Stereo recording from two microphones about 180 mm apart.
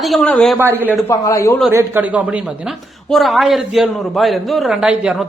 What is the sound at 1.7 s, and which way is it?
Speech, 10° right (ahead or behind).